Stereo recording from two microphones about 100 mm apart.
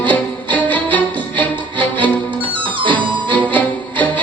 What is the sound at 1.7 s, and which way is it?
Music, 55° right (ahead or behind).